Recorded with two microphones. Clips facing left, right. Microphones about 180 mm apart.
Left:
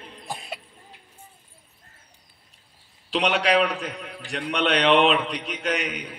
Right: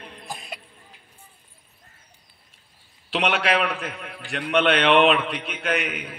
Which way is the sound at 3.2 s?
35° left (ahead or behind).